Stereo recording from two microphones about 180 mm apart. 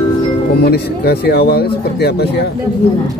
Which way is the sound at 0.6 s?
60° left (ahead or behind).